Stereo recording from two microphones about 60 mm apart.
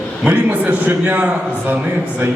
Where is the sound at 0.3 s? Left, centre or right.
Right.